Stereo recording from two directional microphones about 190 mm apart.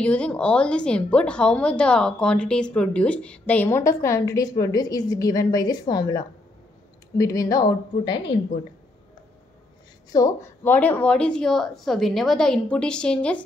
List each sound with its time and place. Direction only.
0.0 s a woman's voice: 5° left (ahead or behind); by 8.2 s 20° left (ahead or behind)
10.1 s a woman's voice: 15° left (ahead or behind)